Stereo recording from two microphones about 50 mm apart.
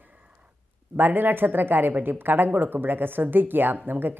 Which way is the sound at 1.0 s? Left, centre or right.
Right.